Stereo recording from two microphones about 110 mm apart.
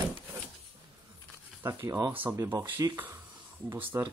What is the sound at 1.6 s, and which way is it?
Speech, 25° right (ahead or behind).